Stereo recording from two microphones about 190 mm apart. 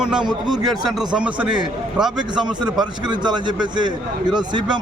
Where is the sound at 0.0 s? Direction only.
5° right (ahead or behind).